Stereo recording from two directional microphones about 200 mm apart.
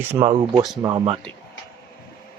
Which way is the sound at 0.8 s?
25° right (ahead or behind).